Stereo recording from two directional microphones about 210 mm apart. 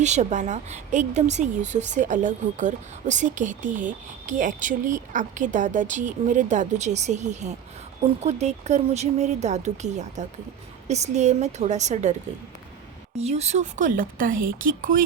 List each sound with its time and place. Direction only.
0.0 s a woman's voice: 35° right (ahead or behind)
13.1 s a woman's voice: 30° right (ahead or behind)